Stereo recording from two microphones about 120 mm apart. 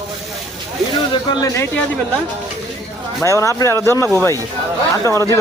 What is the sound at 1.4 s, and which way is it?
Speech, 25° left (ahead or behind).